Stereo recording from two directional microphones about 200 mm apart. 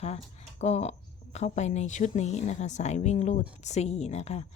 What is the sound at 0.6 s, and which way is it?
A woman's voice, 35° left (ahead or behind).